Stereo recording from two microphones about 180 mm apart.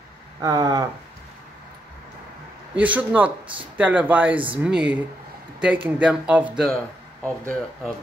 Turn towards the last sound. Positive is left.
turn(degrees=5)  # may be behind; listen again after turning